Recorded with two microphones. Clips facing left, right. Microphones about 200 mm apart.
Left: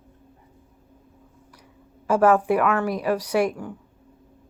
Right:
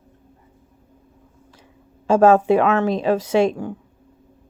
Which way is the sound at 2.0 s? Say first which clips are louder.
Right 4 dB; 25° right (ahead or behind).